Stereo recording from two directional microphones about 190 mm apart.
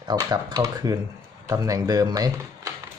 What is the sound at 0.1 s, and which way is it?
Speech, 20° right (ahead or behind).